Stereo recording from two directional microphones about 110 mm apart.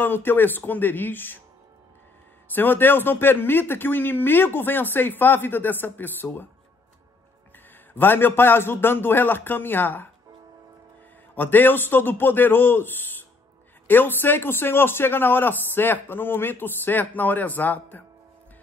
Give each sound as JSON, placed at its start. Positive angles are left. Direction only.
{"t": 0.0, "sound": "a man's voice", "side_deg": 20}
{"t": 2.4, "sound": "a man's voice", "side_deg": 20}
{"t": 7.9, "sound": "a man's voice", "side_deg": 20}
{"t": 11.3, "sound": "a man's voice", "side_deg": 15}